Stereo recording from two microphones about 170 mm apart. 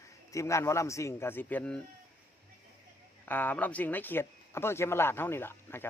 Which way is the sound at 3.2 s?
10° left (ahead or behind).